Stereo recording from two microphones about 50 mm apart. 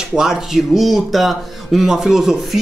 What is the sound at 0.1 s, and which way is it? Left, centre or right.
Speech, centre.